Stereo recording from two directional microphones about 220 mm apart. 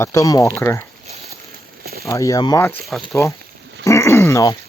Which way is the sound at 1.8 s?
45° right (ahead or behind).